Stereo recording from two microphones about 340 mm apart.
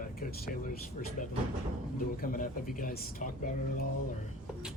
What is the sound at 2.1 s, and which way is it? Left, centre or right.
Speech, left.